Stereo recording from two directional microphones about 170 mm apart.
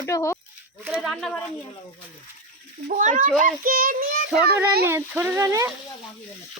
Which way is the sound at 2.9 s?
50° right (ahead or behind).